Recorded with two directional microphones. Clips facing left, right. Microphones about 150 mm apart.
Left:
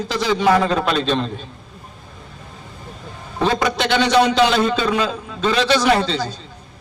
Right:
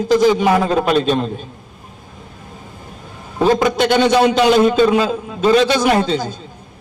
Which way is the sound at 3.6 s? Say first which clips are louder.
Right 5 dB; 45° right (ahead or behind).